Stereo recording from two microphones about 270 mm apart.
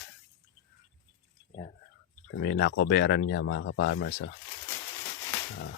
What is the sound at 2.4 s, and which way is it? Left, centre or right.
Speech, left.